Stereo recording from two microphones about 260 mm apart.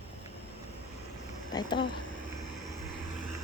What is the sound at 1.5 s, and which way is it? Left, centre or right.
Speech, centre.